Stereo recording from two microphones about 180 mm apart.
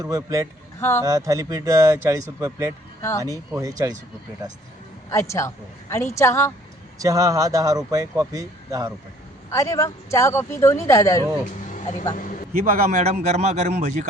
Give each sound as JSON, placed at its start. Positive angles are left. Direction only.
{"t": 0.0, "sound": "speech", "side_deg": -20}
{"t": 0.8, "sound": "speech", "side_deg": 15}
{"t": 1.0, "sound": "speech", "side_deg": -20}
{"t": 3.0, "sound": "speech", "side_deg": 15}
{"t": 3.5, "sound": "speech", "side_deg": -20}
{"t": 5.1, "sound": "speech", "side_deg": 15}
{"t": 7.0, "sound": "speech", "side_deg": -20}
{"t": 9.5, "sound": "speech", "side_deg": 15}
{"t": 11.7, "sound": "vehicle", "side_deg": 40}
{"t": 12.9, "sound": "a man's voice", "side_deg": -40}